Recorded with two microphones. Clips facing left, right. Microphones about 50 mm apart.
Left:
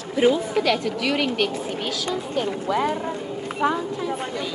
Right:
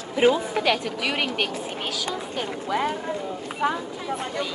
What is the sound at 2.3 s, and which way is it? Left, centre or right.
Speech, centre.